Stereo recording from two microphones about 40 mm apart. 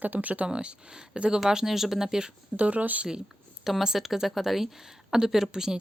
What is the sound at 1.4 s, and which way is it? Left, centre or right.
Speech, centre.